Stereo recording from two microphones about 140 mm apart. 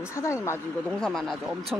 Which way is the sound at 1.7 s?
10° right (ahead or behind).